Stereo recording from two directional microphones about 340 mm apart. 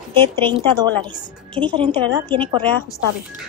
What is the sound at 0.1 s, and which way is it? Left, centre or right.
Speech, centre.